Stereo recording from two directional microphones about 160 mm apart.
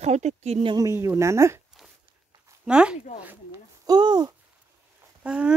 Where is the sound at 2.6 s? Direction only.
5° right (ahead or behind).